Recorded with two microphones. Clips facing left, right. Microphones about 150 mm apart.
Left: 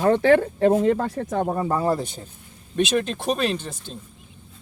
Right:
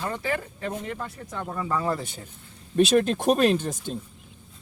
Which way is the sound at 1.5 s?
40° left (ahead or behind).